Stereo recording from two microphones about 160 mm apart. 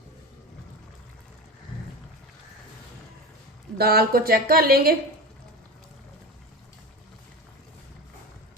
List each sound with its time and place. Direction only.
3.8 s speech: 75° right (ahead or behind)